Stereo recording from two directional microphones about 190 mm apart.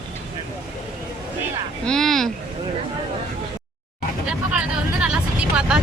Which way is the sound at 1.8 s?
Centre (ahead or behind).